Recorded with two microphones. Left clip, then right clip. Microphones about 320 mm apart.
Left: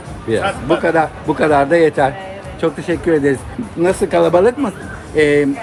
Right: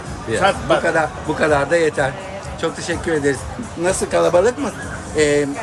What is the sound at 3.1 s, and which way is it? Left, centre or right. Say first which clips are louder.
Speech: left 4 dB; left.